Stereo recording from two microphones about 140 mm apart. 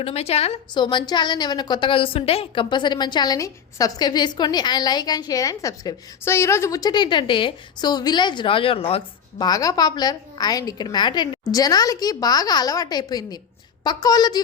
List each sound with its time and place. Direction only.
0.0 s a woman's voice: 45° left (ahead or behind)
0.7 s a woman's voice: 35° left (ahead or behind)
9.5 s a woman's voice: 25° left (ahead or behind)